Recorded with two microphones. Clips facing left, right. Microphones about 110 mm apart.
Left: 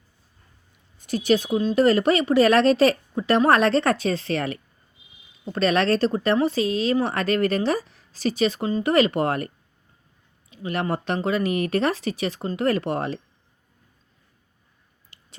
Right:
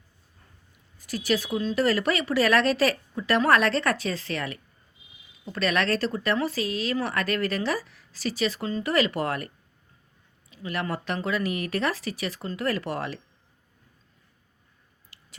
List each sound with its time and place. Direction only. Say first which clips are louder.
0.9 s speech: left 6 dB; 25° left (ahead or behind)
10.5 s speech: left 5 dB; 25° left (ahead or behind)